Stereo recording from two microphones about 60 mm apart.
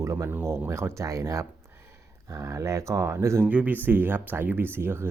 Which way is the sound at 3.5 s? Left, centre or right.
Right.